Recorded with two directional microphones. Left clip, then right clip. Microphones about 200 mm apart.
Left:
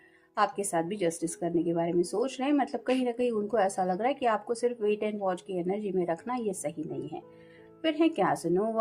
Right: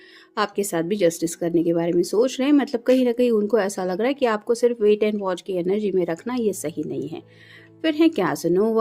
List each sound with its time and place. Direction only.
0.3 s speech: 45° right (ahead or behind)